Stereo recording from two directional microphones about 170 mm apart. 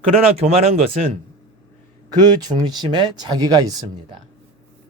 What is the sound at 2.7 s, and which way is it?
Speech, 25° right (ahead or behind).